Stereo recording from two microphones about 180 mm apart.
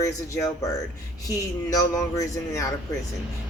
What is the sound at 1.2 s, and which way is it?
Speech, 20° left (ahead or behind).